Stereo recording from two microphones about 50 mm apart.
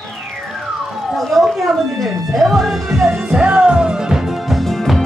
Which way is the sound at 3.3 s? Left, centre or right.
Right.